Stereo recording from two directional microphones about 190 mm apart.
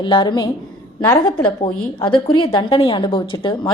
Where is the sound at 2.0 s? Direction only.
25° left (ahead or behind).